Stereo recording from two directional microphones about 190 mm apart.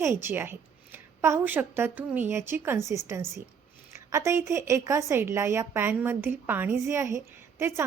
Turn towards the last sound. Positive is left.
turn(degrees=-10)  # may be behind; listen again after turning